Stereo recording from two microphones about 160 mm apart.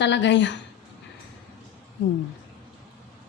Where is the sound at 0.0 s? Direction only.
90° left.